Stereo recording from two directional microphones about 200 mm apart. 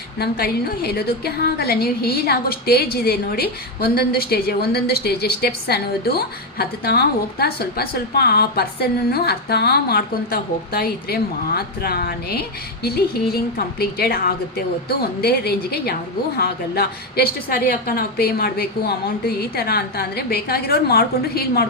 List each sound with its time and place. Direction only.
0.2 s a woman's voice: 50° left (ahead or behind)